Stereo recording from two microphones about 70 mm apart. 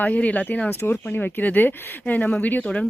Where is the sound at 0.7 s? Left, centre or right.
Left.